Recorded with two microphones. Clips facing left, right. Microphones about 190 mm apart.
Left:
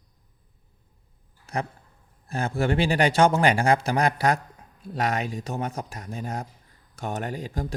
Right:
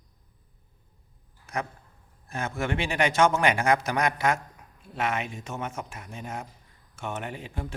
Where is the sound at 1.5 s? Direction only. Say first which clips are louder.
Left 2 dB; 30° left (ahead or behind).